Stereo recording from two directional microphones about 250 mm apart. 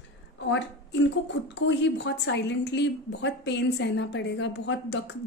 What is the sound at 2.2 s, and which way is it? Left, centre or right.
A woman's voice, left.